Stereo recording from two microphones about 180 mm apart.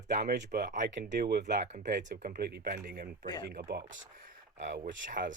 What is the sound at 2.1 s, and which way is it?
Speech, 55° right (ahead or behind).